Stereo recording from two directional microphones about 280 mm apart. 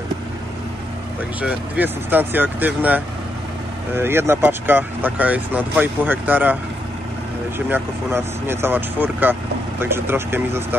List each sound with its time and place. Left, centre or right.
1.4 s speech: centre